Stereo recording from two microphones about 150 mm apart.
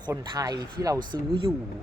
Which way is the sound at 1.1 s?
40° right (ahead or behind).